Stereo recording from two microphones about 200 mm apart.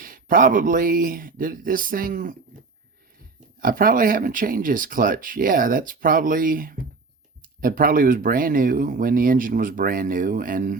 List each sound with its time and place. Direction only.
0.0 s speech: 45° right (ahead or behind)
3.6 s speech: 45° right (ahead or behind)